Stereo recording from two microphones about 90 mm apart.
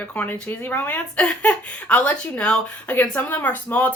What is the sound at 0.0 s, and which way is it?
Speech, 20° left (ahead or behind).